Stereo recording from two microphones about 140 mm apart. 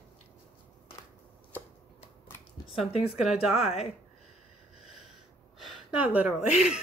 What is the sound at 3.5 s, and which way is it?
Speech, 45° left (ahead or behind).